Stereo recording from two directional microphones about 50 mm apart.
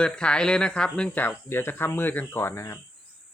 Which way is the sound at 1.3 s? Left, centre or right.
Left.